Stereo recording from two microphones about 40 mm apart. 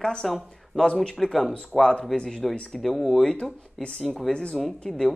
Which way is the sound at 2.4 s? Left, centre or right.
Centre.